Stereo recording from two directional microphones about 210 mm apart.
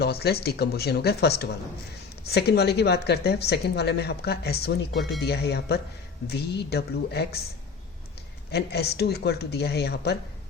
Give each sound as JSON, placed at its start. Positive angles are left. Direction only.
{"t": 0.0, "sound": "speech", "side_deg": 50}
{"t": 8.5, "sound": "speech", "side_deg": 50}